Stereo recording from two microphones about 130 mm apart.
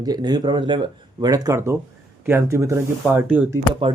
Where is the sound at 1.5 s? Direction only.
20° right (ahead or behind).